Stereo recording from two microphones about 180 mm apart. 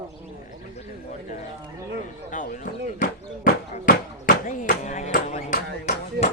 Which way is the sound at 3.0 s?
50° left (ahead or behind).